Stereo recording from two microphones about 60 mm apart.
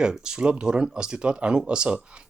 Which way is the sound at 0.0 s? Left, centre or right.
Centre.